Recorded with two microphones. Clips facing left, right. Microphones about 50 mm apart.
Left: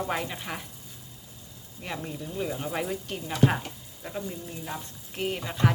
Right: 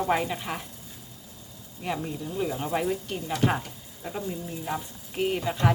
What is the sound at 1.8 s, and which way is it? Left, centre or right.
Speech, centre.